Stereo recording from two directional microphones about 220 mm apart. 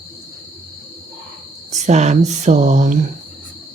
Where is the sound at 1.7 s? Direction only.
30° right (ahead or behind).